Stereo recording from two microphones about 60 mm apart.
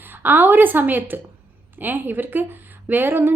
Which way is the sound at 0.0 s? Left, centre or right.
Right.